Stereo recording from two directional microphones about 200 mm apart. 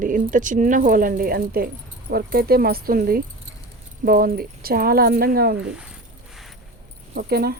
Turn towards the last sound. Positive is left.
turn(degrees=-50)  # may be behind; listen again after turning